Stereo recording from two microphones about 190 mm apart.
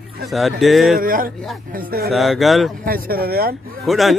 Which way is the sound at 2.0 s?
Centre (ahead or behind).